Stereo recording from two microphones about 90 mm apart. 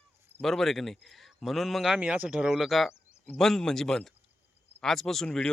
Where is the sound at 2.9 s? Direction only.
25° left (ahead or behind).